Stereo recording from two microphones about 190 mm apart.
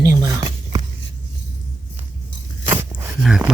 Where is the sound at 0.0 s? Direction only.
20° right (ahead or behind).